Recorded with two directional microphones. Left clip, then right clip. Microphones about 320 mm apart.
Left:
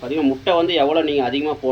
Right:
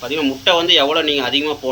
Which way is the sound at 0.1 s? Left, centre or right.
Centre.